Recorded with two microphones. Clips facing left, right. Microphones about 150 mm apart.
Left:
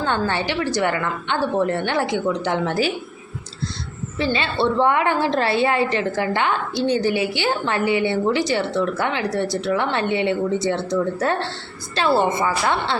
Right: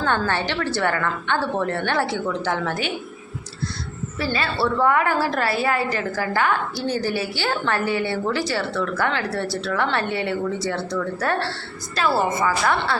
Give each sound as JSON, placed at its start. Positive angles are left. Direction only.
{"t": 0.0, "sound": "a woman's voice", "side_deg": 15}
{"t": 4.2, "sound": "a woman's voice", "side_deg": 20}